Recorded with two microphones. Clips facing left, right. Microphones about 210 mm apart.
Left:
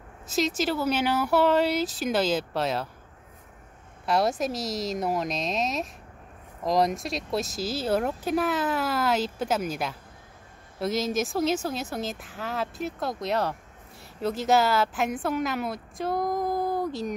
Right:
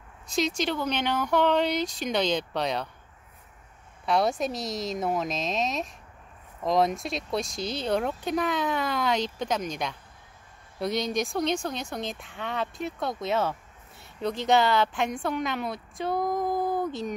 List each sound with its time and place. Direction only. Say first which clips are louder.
0.3 s speech: left 1 dB; 5° left (ahead or behind)
4.0 s speech: even; centre (ahead or behind)